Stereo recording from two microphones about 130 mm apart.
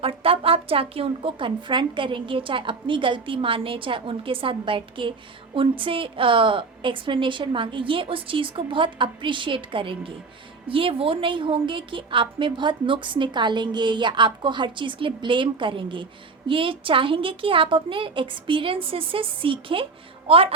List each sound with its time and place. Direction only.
0.0 s a woman's voice: 45° right (ahead or behind)